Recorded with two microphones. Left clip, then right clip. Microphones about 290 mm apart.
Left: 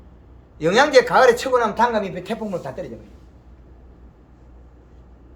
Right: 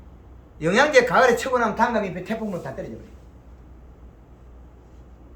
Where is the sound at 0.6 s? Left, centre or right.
Centre.